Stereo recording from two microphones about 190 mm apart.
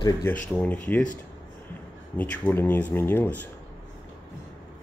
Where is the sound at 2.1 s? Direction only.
10° left (ahead or behind).